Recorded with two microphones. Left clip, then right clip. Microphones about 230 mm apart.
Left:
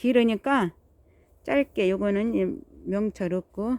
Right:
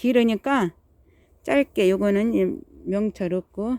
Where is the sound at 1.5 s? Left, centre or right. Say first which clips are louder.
Right 4 dB; centre.